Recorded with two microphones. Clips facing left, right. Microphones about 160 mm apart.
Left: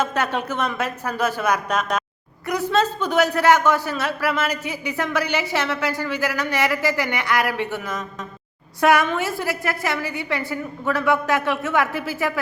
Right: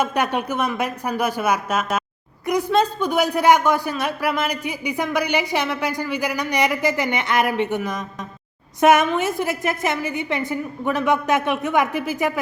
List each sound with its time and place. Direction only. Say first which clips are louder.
0.0 s a woman's voice: right 2 dB; 15° right (ahead or behind)